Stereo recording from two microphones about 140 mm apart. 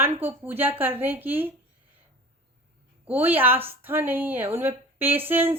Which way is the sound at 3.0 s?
15° right (ahead or behind).